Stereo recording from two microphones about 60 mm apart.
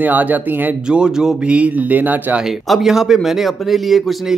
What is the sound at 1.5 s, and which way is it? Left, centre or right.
Speech, right.